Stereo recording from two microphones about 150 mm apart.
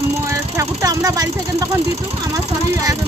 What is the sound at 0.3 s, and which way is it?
Speech, 20° right (ahead or behind).